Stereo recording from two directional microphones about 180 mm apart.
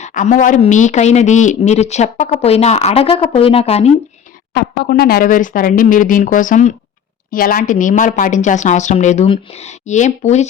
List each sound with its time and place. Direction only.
0.0 s a woman's voice: 45° left (ahead or behind)
4.5 s speech: 60° left (ahead or behind); by 10.4 s 40° left (ahead or behind)